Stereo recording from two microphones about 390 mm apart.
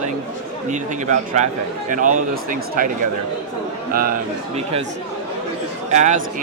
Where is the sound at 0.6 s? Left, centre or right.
Centre.